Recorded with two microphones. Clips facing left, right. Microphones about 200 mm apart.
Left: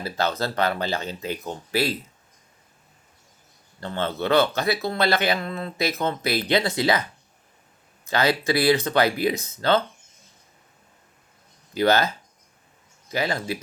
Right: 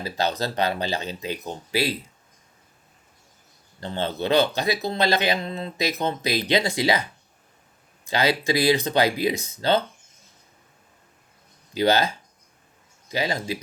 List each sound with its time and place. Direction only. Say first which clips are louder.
0.0 s speech: even; 15° right (ahead or behind)
3.8 s speech: even; 20° right (ahead or behind)
8.0 s speech: even; 15° right (ahead or behind)
11.7 s speech: even; 15° right (ahead or behind)